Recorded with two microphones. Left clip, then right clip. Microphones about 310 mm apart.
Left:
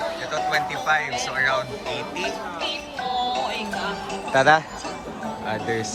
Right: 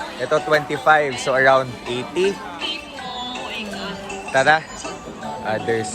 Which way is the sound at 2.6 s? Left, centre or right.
Left.